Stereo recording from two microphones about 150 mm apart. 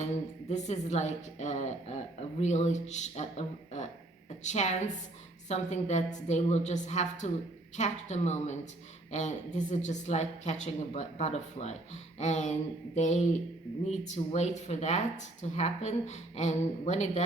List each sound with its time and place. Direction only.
0.4 s speech: 50° left (ahead or behind)